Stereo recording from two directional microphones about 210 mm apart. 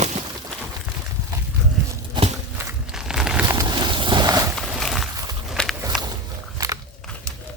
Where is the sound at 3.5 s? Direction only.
20° right (ahead or behind).